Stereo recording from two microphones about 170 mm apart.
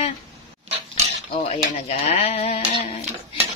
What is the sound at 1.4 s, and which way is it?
Speech, 35° left (ahead or behind).